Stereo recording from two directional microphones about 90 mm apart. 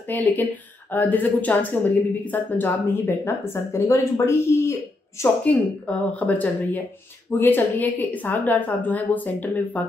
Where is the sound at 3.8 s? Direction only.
35° left (ahead or behind).